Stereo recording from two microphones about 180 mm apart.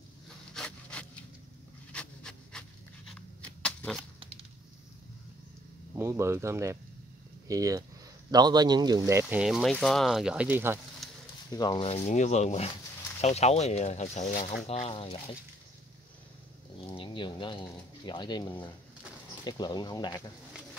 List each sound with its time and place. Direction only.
0.6 s wood: 5° left (ahead or behind)
1.9 s dog: 5° left (ahead or behind)
3.1 s a sound: 5° left (ahead or behind)
5.9 s speech: 15° right (ahead or behind)
9.4 s speech: centre (ahead or behind)
11.5 s speech: 25° left (ahead or behind)
12.1 s speech: 40° left (ahead or behind)
16.9 s speech: 30° left (ahead or behind)